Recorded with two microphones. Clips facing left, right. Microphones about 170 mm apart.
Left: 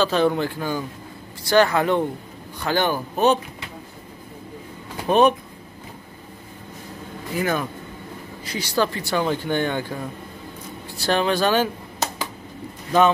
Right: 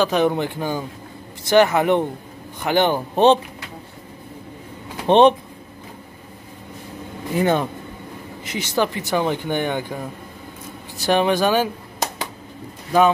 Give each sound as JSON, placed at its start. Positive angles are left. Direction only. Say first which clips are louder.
{"t": 0.0, "sound": "speech", "louder": "right 1 dB", "side_deg": -15}
{"t": 5.0, "sound": "speech", "louder": "right 4 dB", "side_deg": -25}
{"t": 7.3, "sound": "speech", "louder": "right 5 dB", "side_deg": -25}
{"t": 11.0, "sound": "speech", "louder": "right 3 dB", "side_deg": -15}
{"t": 12.9, "sound": "speech", "louder": "right 1 dB", "side_deg": -10}